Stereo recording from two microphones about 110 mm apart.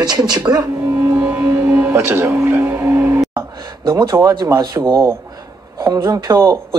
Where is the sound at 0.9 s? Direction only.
20° right (ahead or behind).